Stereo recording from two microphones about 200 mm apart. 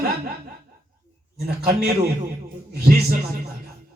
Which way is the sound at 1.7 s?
50° right (ahead or behind).